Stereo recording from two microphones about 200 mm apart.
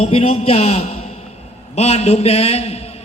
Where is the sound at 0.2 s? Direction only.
30° left (ahead or behind).